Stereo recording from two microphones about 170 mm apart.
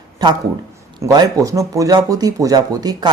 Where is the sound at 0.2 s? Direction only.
25° right (ahead or behind).